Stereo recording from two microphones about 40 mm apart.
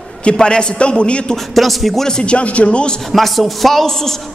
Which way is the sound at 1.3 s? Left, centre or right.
Centre.